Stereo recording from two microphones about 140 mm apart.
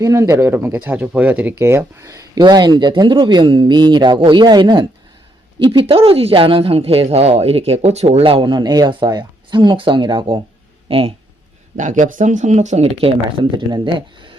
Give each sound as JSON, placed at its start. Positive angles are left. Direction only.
{"t": 0.0, "sound": "speech", "side_deg": -20}
{"t": 11.8, "sound": "speech", "side_deg": -65}